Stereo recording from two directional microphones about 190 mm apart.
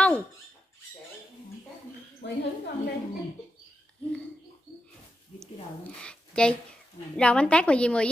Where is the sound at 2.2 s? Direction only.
65° left (ahead or behind).